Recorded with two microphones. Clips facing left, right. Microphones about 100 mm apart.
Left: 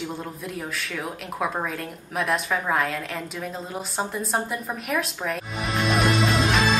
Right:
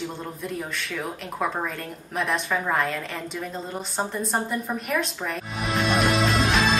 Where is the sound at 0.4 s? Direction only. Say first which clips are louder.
Right 1 dB; centre (ahead or behind).